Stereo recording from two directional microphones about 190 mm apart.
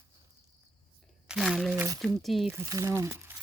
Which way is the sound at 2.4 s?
15° right (ahead or behind).